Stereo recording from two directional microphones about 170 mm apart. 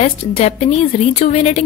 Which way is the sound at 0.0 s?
40° left (ahead or behind).